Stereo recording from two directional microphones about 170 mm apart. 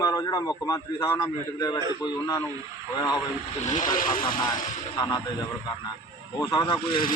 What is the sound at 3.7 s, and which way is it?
Speech, 50° left (ahead or behind).